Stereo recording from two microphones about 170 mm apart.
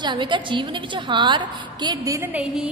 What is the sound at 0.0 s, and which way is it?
A woman's voice, 30° right (ahead or behind).